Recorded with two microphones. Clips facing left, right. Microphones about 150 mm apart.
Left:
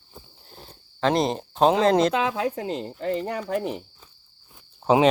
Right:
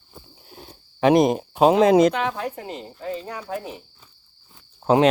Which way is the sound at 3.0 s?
75° left (ahead or behind).